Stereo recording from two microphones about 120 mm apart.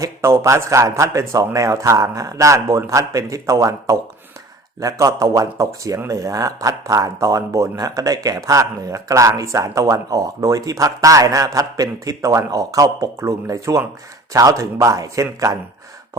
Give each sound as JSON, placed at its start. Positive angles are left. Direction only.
{"t": 0.0, "sound": "speech", "side_deg": -25}